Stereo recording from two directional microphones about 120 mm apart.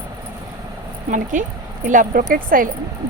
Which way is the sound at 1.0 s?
90° right.